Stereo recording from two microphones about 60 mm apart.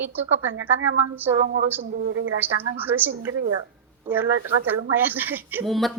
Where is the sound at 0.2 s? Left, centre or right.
Right.